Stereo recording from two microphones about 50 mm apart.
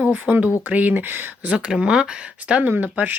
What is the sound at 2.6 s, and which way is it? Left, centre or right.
Speech, right.